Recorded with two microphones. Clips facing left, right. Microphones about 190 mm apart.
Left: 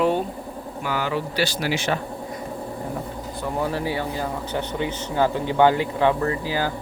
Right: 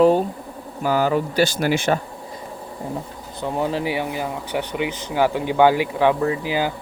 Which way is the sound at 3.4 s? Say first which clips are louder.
Right 3 dB; 20° right (ahead or behind).